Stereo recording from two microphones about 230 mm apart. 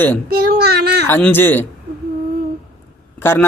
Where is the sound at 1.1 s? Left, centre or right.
Centre.